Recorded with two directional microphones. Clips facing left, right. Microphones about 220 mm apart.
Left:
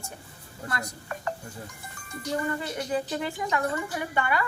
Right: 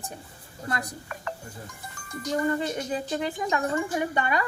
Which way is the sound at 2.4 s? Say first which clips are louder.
Right 4 dB; 20° right (ahead or behind).